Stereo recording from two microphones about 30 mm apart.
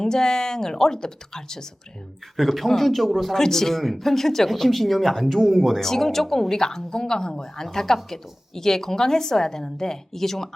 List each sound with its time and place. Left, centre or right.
0.0 s a woman's voice: left
2.3 s a man's voice: centre
3.3 s speech: centre